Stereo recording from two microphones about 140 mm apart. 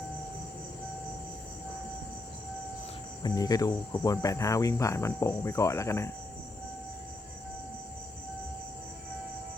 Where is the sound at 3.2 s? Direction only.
30° left (ahead or behind).